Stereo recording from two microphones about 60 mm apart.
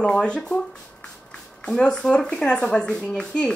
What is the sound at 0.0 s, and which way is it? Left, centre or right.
Speech, centre.